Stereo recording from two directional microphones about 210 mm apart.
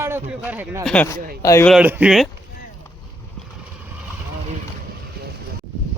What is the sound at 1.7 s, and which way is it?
Speech, 5° right (ahead or behind).